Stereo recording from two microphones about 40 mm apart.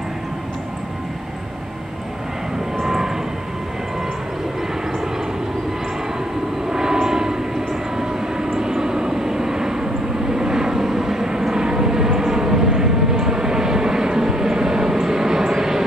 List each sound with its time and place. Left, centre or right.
2.8 s vehicle: centre
6.7 s vehicle: centre